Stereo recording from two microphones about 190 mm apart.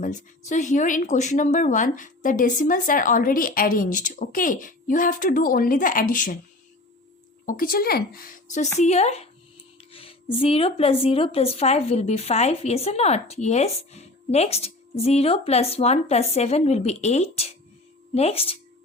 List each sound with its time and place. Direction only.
0.0 s speech: 40° left (ahead or behind)
7.4 s a woman's voice: 45° left (ahead or behind)
9.9 s music: 30° left (ahead or behind)
10.3 s a woman's voice: 30° left (ahead or behind)